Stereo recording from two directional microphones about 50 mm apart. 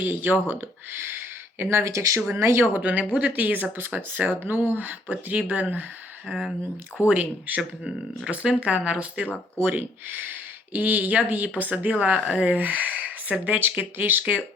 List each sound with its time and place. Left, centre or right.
0.0 s speech: right
0.4 s a sound: right
1.8 s speech: right
2.4 s speech: right
2.7 s speech: right
6.2 s speech: centre
7.1 s speech: right
9.2 s speech: left
9.6 s speech: right
12.5 s speech: right